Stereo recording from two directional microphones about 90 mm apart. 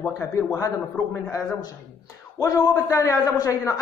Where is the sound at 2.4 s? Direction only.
45° left (ahead or behind).